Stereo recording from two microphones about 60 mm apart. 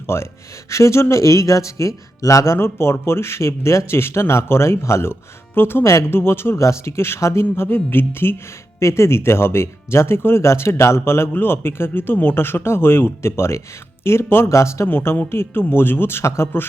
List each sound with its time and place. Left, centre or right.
0.1 s speech: left
2.6 s speech: left
5.5 s speech: left
5.8 s speech: left
6.6 s speech: left
14.5 s speech: left
14.8 s speech: left